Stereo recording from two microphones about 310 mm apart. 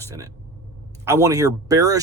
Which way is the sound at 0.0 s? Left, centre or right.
Centre.